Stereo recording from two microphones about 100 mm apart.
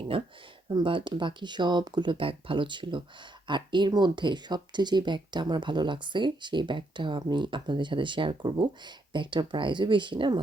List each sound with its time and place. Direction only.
0.1 s speech: 65° right (ahead or behind)